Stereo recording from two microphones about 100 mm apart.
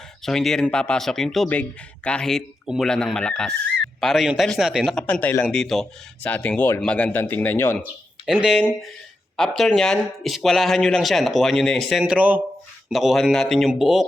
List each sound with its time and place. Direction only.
0.2 s a man's voice: 5° left (ahead or behind)
5.0 s a man's voice: 15° left (ahead or behind)
5.5 s a man's voice: 5° left (ahead or behind); by 7.8 s 20° left (ahead or behind)
8.3 s speech: 5° right (ahead or behind)
9.4 s speech: 5° left (ahead or behind); by 12.4 s 15° right (ahead or behind)
12.9 s speech: centre (ahead or behind)